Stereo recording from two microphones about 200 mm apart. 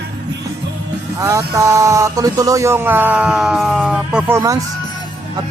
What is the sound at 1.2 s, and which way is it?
Speech, 15° right (ahead or behind).